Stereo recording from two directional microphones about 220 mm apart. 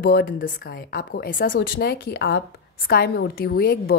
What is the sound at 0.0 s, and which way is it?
A woman's voice, 40° left (ahead or behind).